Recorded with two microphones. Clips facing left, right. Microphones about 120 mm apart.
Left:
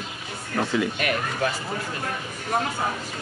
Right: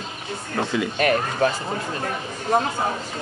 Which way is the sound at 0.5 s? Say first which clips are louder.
Even; 35° right (ahead or behind).